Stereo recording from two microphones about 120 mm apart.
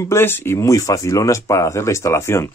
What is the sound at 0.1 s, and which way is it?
Speech, 20° left (ahead or behind).